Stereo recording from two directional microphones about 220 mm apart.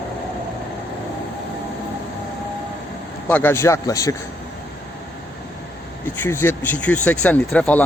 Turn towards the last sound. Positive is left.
turn(degrees=5)  # may be behind; listen again after turning